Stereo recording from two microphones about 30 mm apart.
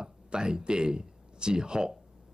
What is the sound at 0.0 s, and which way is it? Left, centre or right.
A man's voice, right.